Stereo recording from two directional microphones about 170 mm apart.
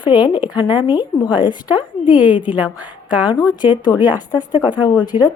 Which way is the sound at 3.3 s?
20° left (ahead or behind).